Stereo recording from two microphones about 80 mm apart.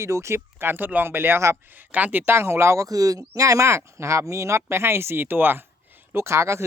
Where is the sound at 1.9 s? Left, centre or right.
Right.